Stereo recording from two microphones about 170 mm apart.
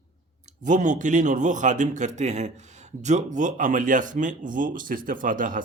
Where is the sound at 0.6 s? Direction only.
45° right (ahead or behind).